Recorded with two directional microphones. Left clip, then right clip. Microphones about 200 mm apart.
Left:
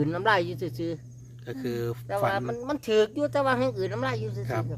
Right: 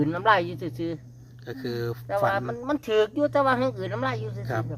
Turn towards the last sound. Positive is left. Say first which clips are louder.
# right 1 dB
turn(degrees=5)  # may be behind; listen again after turning